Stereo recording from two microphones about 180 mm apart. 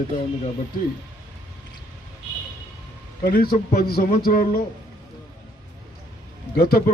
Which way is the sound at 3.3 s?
55° left (ahead or behind).